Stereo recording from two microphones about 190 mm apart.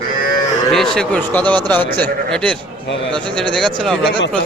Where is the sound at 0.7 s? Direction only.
Centre (ahead or behind).